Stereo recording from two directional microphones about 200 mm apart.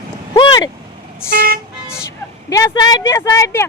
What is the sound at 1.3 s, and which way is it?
Speech, 45° right (ahead or behind).